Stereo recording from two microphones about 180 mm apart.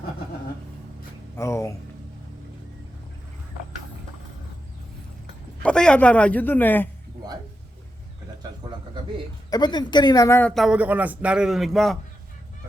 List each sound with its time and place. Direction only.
1.4 s a man's voice: 15° left (ahead or behind)
5.6 s a man's voice: 5° left (ahead or behind)
9.5 s a woman's voice: 25° left (ahead or behind)
10.5 s a man's voice: 5° right (ahead or behind)